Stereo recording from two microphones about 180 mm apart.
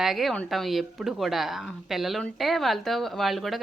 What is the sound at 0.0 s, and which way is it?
Speech, centre (ahead or behind).